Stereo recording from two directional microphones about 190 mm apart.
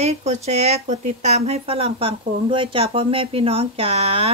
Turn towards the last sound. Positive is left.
turn(degrees=-30)  # may be behind; listen again after turning